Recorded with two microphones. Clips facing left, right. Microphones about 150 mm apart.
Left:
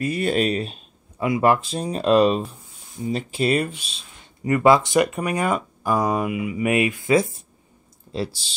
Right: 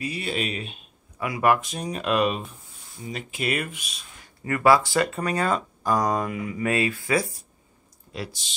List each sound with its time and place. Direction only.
0.0 s speech: 50° left (ahead or behind)
1.2 s speech: 25° left (ahead or behind)